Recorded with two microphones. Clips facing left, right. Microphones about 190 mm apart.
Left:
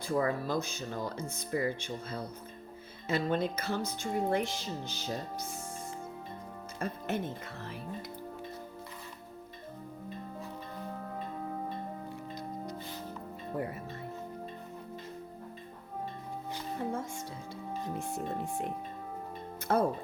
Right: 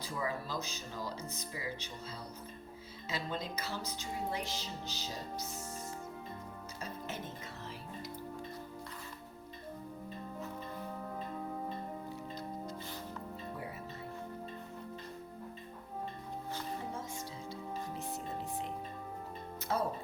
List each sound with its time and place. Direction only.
0.0 s speech: 55° left (ahead or behind)
6.7 s speech: 55° left (ahead or behind)
17.9 s music: 55° left (ahead or behind)
19.7 s speech: 60° left (ahead or behind)